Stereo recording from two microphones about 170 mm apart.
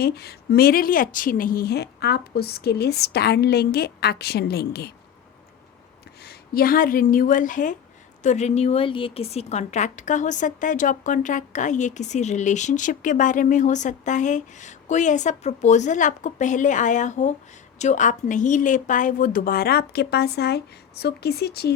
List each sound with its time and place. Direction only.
0.0 s speech: 70° left (ahead or behind)
6.2 s a woman's voice: 60° left (ahead or behind)